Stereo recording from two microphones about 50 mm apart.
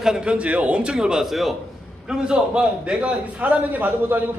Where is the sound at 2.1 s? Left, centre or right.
Centre.